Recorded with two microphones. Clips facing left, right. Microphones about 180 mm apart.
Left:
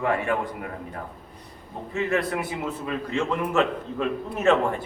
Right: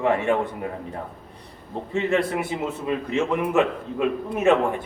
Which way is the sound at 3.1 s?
15° right (ahead or behind).